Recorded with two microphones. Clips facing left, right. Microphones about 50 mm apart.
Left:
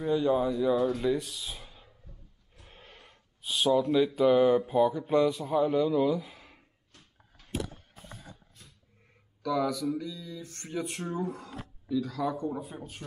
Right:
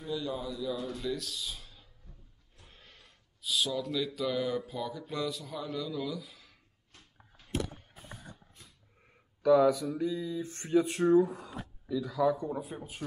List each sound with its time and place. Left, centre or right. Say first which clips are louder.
0.0 s speech: left 10 dB; left
1.1 s speech: left 5 dB; centre
2.6 s a sound: left 5 dB; centre
3.0 s speech: left 1 dB; left
9.4 s speech: right 5 dB; centre